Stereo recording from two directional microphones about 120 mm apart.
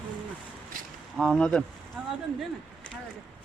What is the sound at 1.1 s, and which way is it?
Speech, 5° left (ahead or behind).